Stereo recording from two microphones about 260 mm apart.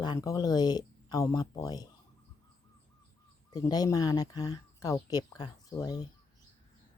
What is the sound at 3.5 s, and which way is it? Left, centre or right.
Speech, centre.